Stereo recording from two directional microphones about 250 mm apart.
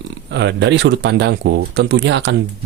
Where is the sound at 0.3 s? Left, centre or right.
Right.